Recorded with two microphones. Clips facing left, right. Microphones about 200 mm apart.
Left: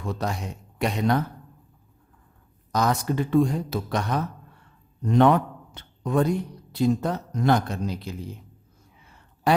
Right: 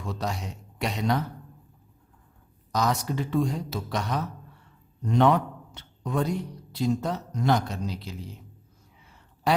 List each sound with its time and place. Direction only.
0.0 s speech: 55° left (ahead or behind)
2.7 s a man's voice: 55° left (ahead or behind)
9.0 s a sound: 50° left (ahead or behind)